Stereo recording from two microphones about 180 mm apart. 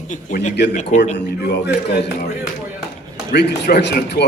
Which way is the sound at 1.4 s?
65° left (ahead or behind).